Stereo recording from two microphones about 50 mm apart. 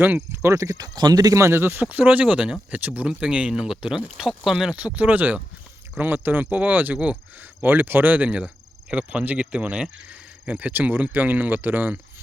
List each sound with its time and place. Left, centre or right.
0.3 s speech: right
1.3 s speech: right
1.8 s speech: right
2.2 s speech: centre
3.1 s speech: centre
4.8 s speech: right
8.9 s speech: right
10.4 s speech: right